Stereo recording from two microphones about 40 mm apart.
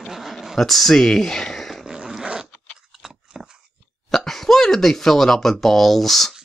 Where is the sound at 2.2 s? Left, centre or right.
Centre.